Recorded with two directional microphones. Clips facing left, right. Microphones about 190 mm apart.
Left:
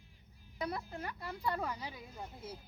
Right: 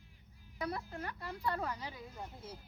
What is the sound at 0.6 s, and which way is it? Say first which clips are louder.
Speech: even; 20° left (ahead or behind).